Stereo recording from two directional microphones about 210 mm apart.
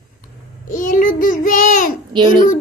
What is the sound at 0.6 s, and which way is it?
Child singing, 40° left (ahead or behind).